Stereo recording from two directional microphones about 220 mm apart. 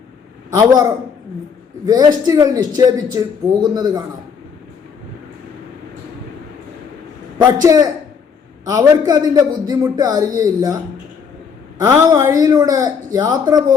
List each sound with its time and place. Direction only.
0.5 s a man's voice: 15° right (ahead or behind)
1.9 s a man's voice: 15° right (ahead or behind)
7.3 s a man's voice: 15° right (ahead or behind)
11.8 s a man's voice: 15° right (ahead or behind)